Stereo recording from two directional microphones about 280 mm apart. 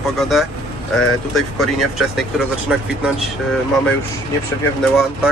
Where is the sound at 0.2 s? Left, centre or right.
Centre.